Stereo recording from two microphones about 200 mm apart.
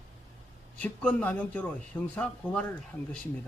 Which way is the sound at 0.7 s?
5° left (ahead or behind).